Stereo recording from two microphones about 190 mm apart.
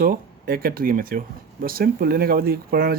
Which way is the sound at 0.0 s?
50° right (ahead or behind).